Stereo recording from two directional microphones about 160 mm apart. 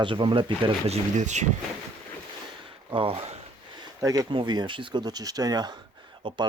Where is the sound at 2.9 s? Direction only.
35° right (ahead or behind).